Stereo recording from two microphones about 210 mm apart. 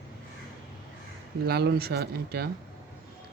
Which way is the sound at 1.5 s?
50° right (ahead or behind).